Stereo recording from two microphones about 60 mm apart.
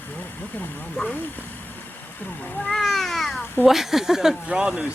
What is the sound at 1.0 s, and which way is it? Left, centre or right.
Speech, left.